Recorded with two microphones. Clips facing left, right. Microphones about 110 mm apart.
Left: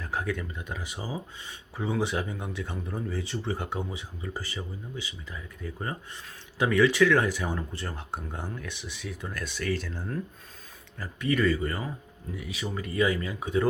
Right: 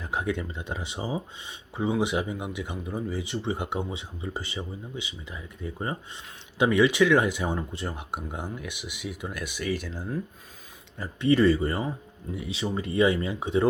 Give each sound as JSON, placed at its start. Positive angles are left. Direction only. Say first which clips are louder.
{"t": 0.0, "sound": "speech", "louder": "right 2 dB", "side_deg": -20}
{"t": 10.9, "sound": "speech", "louder": "right 5 dB", "side_deg": -25}